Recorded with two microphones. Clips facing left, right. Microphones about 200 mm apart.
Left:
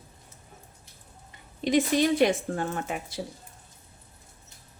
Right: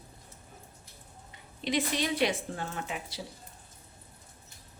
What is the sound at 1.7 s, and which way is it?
A woman's voice, 45° left (ahead or behind).